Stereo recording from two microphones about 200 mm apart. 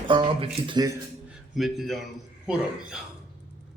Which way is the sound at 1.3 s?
Centre (ahead or behind).